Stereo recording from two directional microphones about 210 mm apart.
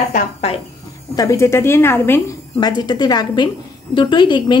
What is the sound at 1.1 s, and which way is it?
A woman's voice, 15° left (ahead or behind).